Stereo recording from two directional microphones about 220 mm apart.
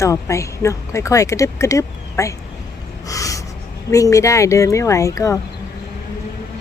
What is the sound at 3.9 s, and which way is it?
Speech, 15° left (ahead or behind).